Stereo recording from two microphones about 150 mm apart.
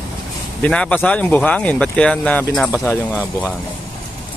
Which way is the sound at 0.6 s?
5° left (ahead or behind).